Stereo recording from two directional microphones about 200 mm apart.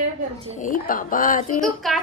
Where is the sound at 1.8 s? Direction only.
Centre (ahead or behind).